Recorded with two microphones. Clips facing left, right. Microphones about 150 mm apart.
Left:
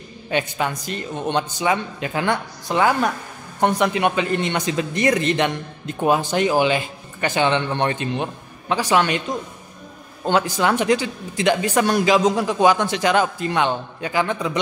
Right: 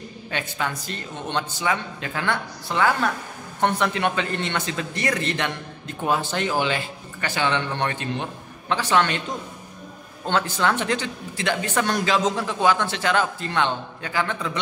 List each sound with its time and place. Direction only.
0.3 s speech: 20° left (ahead or behind)
10.2 s speech: 10° left (ahead or behind)